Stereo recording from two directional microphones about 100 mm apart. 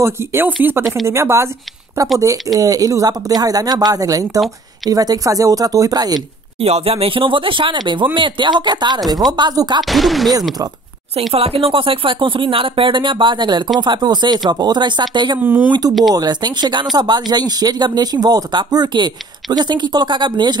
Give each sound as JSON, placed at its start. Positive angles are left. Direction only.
{"t": 0.0, "sound": "speech", "side_deg": -25}
{"t": 6.6, "sound": "speech", "side_deg": -85}
{"t": 9.8, "sound": "speech", "side_deg": 0}
{"t": 11.3, "sound": "speech", "side_deg": -70}
{"t": 15.4, "sound": "speech", "side_deg": -15}
{"t": 15.9, "sound": "speech", "side_deg": 0}
{"t": 16.2, "sound": "speech", "side_deg": -45}